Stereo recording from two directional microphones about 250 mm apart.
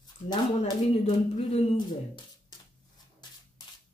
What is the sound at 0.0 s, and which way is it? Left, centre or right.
Speech, centre.